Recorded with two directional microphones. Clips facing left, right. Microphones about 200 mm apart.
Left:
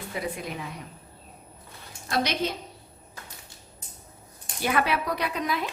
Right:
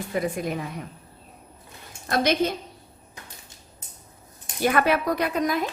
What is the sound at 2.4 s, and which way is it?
Speech, 50° right (ahead or behind).